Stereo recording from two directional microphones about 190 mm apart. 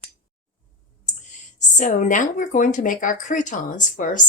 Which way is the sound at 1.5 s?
40° left (ahead or behind).